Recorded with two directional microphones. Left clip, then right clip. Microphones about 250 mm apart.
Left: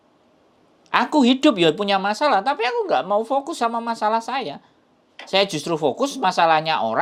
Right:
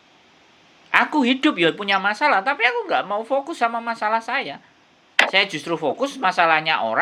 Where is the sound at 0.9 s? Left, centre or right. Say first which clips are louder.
Even; left.